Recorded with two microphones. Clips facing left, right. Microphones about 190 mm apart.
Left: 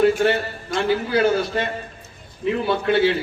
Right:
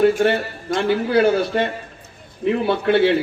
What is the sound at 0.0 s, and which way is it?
A man's voice, 50° right (ahead or behind).